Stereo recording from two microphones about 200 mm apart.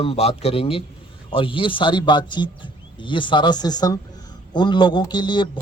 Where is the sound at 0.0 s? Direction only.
30° left (ahead or behind).